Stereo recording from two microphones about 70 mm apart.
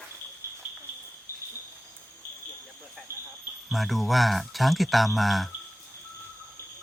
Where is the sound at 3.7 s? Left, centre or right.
Centre.